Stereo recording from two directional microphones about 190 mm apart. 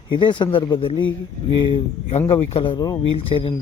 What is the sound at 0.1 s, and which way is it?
A man's voice, 25° left (ahead or behind).